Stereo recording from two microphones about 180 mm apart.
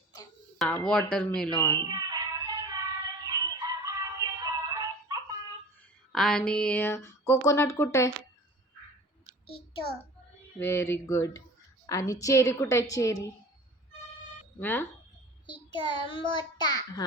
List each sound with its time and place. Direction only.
0.6 s speech: 5° left (ahead or behind)
1.7 s a sound: 20° right (ahead or behind)
4.7 s music: 20° right (ahead or behind)
6.1 s speech: 5° left (ahead or behind)
9.5 s a child's voice: 30° left (ahead or behind)
10.6 s speech: 15° left (ahead or behind)
14.6 s speech: 10° left (ahead or behind)
15.4 s a child's voice: 25° left (ahead or behind)